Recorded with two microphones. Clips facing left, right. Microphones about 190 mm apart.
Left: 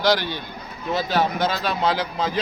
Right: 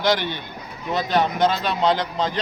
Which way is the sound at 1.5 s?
5° left (ahead or behind).